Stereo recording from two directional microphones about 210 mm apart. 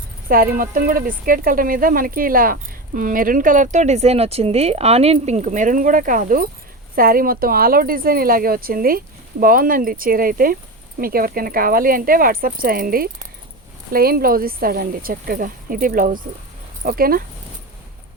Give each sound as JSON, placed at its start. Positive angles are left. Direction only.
{"t": 0.3, "sound": "speech", "side_deg": -45}